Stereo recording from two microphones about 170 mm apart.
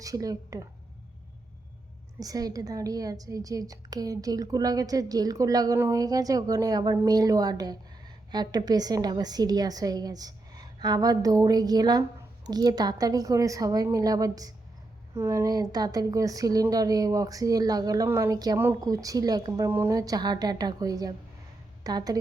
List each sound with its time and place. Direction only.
0.0 s a woman's voice: 20° right (ahead or behind)
2.1 s a woman's voice: 20° right (ahead or behind)